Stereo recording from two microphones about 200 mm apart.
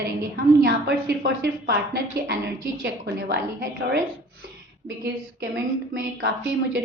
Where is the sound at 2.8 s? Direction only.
50° right (ahead or behind).